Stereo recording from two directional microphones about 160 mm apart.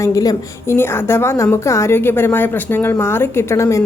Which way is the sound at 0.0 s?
20° left (ahead or behind).